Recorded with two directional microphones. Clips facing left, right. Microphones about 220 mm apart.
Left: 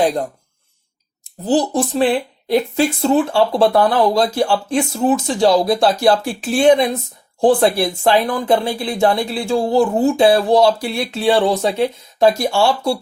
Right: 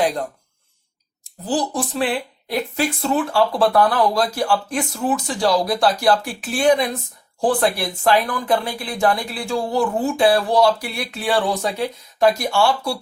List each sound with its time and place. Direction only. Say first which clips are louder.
1.2 s speech: left 6 dB; 25° left (ahead or behind)